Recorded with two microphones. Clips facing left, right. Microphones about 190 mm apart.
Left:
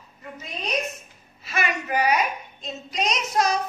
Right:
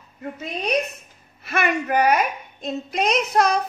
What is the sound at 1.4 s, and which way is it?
A woman's voice, 60° right (ahead or behind).